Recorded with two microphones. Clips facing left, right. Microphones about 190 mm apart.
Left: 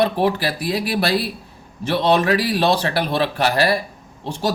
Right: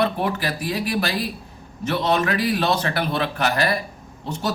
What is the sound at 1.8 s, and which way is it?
A man's voice, 35° left (ahead or behind).